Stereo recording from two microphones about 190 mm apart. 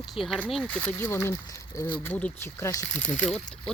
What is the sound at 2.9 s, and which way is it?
Speech, 40° left (ahead or behind).